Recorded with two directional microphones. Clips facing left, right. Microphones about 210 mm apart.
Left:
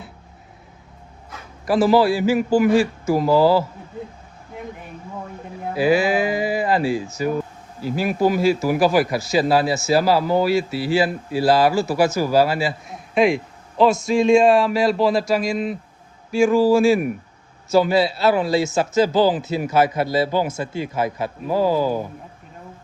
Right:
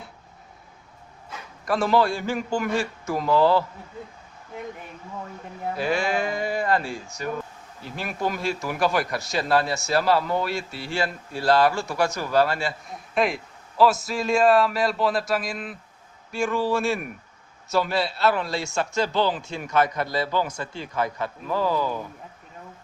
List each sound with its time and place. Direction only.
1.6 s a man's voice: 5° left (ahead or behind)
5.6 s a man's voice: 5° left (ahead or behind)
21.2 s speech: 40° left (ahead or behind)